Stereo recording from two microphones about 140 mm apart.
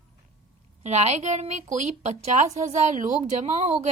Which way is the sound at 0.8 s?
55° right (ahead or behind).